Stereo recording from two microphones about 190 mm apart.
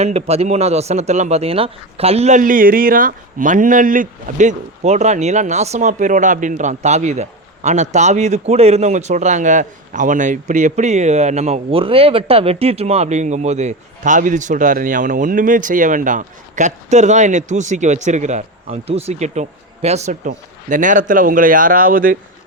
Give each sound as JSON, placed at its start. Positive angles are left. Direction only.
{"t": 0.0, "sound": "a man's voice", "side_deg": -35}